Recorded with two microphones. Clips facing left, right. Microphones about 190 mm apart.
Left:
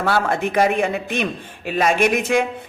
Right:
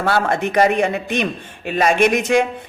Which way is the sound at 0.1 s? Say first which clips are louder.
Right 2 dB; centre (ahead or behind).